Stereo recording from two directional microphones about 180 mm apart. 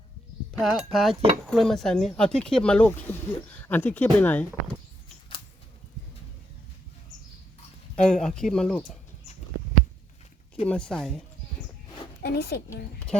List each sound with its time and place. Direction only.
0.6 s speech: centre (ahead or behind)
7.9 s speech: 5° left (ahead or behind)
10.7 s speech: 5° left (ahead or behind)
12.2 s a woman's voice: 65° left (ahead or behind)